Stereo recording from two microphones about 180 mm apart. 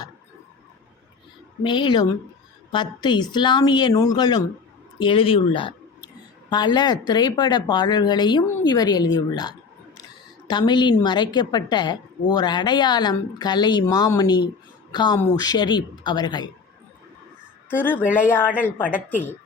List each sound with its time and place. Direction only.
1.6 s a woman's voice: 25° left (ahead or behind)
17.7 s speech: 10° left (ahead or behind)